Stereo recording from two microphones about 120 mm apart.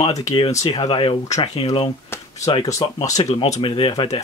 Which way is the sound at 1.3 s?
55° left (ahead or behind).